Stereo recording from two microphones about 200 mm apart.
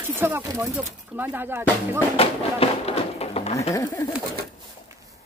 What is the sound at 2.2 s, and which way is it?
Speech, 30° left (ahead or behind).